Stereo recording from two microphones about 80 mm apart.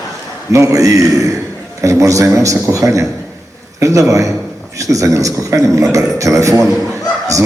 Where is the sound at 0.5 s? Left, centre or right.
Right.